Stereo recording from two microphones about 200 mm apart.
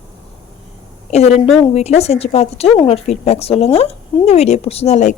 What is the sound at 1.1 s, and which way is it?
Speech, 35° left (ahead or behind).